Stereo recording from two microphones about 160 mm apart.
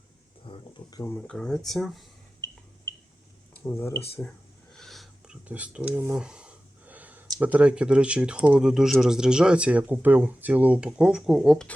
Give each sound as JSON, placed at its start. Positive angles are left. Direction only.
{"t": 0.4, "sound": "a sound", "side_deg": 30}
{"t": 1.3, "sound": "speech", "side_deg": 5}
{"t": 3.6, "sound": "speech", "side_deg": 15}
{"t": 4.7, "sound": "cutlery", "side_deg": 0}
{"t": 7.3, "sound": "speech", "side_deg": -10}